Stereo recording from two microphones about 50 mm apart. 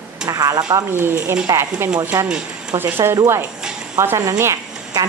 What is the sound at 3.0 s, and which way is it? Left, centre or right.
Speech, right.